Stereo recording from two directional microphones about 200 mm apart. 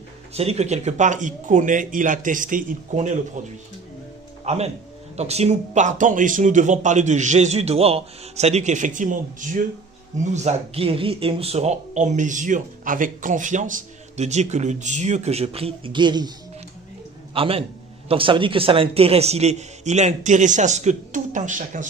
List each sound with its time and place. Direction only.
0.3 s speech: 30° right (ahead or behind)
4.5 s speech: 35° right (ahead or behind)
17.3 s speech: 25° right (ahead or behind)